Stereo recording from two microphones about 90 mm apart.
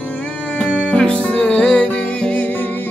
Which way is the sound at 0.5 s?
10° left (ahead or behind).